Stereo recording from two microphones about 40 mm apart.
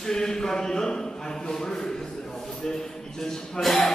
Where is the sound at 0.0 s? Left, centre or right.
Centre.